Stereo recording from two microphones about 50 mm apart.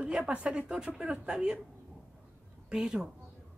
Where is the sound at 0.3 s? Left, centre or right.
Right.